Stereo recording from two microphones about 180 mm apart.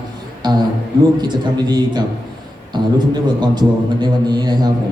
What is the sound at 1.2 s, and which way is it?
A man's voice, 25° right (ahead or behind).